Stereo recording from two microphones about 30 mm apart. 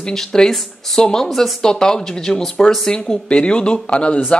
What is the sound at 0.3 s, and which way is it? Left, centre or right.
Speech, centre.